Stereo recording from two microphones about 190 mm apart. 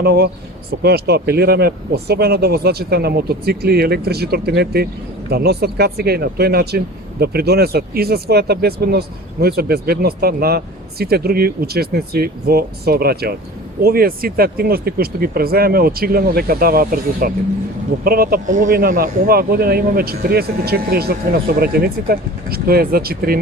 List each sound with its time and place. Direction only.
0.0 s speech: 55° right (ahead or behind)